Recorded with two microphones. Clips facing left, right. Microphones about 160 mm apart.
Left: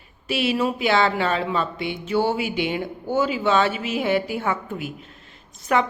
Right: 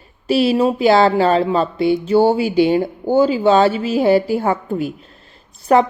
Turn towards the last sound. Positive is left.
turn(degrees=-35)  # may be behind; listen again after turning